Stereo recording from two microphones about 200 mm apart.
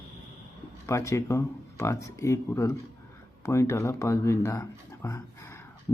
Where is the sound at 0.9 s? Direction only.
15° left (ahead or behind).